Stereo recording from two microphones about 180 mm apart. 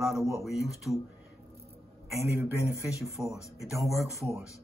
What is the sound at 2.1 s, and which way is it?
A man's voice, 10° right (ahead or behind).